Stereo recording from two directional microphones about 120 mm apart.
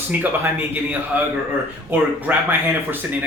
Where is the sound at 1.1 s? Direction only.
15° right (ahead or behind).